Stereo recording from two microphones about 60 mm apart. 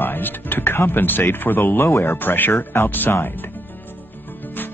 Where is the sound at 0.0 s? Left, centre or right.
Left.